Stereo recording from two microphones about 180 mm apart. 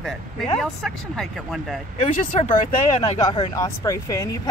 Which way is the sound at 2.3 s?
35° left (ahead or behind).